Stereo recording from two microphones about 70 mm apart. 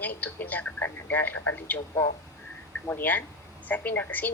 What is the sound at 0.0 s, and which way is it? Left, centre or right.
Speech, left.